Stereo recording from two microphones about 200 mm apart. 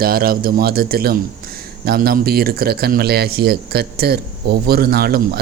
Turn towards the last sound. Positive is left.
turn(degrees=-50)  # may be behind; listen again after turning